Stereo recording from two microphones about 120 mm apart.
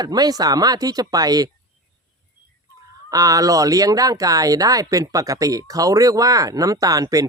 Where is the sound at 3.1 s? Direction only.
30° right (ahead or behind).